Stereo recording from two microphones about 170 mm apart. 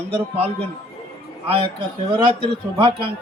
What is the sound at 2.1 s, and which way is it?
A man's voice, 30° right (ahead or behind).